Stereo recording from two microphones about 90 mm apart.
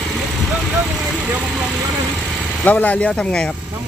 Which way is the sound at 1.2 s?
10° right (ahead or behind).